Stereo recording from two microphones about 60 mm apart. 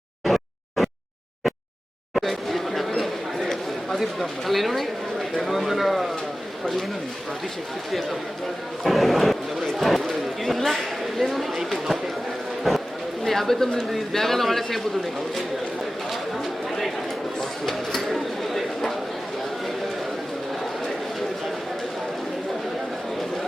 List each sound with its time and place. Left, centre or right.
0.3 s a sound: centre
2.1 s chatter: centre
5.4 s a man's voice: centre
8.8 s a man's voice: centre
16.4 s chatter: centre
17.7 s bird: centre